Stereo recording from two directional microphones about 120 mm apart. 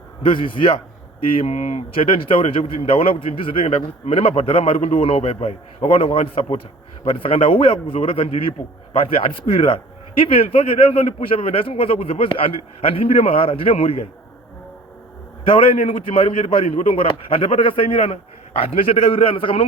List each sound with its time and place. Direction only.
0.3 s a man's voice: 45° left (ahead or behind)
1.4 s a man's voice: 65° left (ahead or behind)
2.2 s a man's voice: 50° left (ahead or behind)
15.4 s a man's voice: 45° left (ahead or behind)